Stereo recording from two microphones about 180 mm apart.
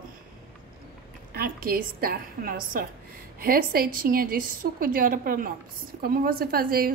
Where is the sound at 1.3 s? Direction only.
55° right (ahead or behind).